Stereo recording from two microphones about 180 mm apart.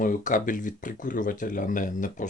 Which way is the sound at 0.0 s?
45° left (ahead or behind).